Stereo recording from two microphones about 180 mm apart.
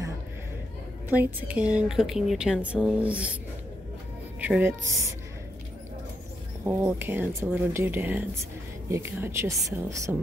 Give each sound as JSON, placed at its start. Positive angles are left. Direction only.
{"t": 1.1, "sound": "a woman's voice", "side_deg": -10}
{"t": 4.4, "sound": "speech", "side_deg": -10}
{"t": 6.6, "sound": "speech", "side_deg": -10}